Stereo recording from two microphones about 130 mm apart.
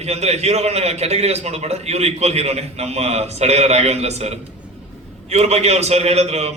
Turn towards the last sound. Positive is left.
turn(degrees=-55)  # may be behind; listen again after turning